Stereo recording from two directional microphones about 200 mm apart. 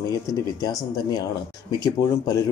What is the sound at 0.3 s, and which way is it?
Speech, 20° left (ahead or behind).